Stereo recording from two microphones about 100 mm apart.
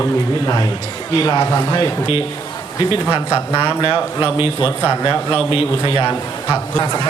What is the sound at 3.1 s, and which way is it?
Speech, 15° right (ahead or behind).